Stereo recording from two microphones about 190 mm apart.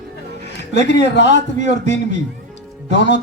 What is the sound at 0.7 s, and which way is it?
Speech, 65° left (ahead or behind).